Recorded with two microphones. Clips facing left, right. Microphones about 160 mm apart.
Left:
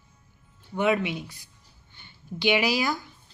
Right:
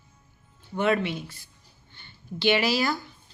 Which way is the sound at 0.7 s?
15° left (ahead or behind).